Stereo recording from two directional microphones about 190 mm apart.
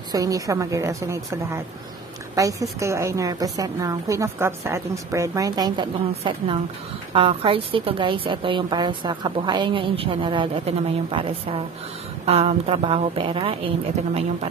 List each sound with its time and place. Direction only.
0.1 s a woman's voice: 20° right (ahead or behind)